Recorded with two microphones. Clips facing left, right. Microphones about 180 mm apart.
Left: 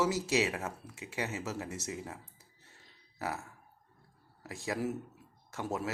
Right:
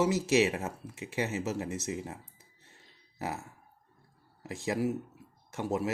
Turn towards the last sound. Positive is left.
turn(degrees=-20)  # may be behind; listen again after turning